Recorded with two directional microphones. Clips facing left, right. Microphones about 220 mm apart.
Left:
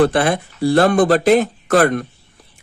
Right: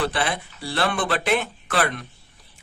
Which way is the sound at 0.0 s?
50° left (ahead or behind).